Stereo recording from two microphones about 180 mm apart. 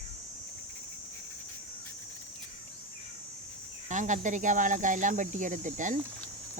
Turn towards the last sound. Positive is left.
turn(degrees=-45)  # may be behind; listen again after turning